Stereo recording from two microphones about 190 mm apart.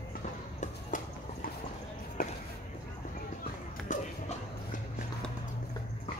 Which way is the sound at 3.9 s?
45° left (ahead or behind).